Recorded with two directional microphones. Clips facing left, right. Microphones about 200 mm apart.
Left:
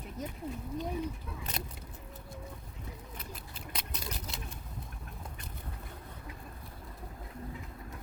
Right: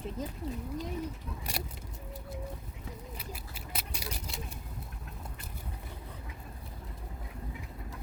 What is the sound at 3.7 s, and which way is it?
Vehicle, 10° right (ahead or behind).